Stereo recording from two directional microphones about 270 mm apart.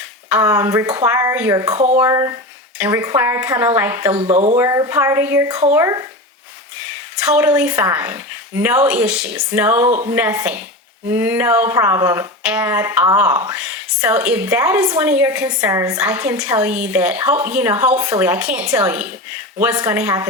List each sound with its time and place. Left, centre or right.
0.3 s speech: centre
4.1 s speech: right
4.5 s speech: centre
7.2 s speech: centre